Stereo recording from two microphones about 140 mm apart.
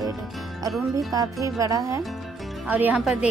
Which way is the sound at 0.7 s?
Centre (ahead or behind).